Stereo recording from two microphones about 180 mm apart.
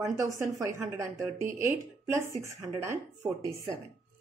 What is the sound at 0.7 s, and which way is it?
Speech, 15° right (ahead or behind).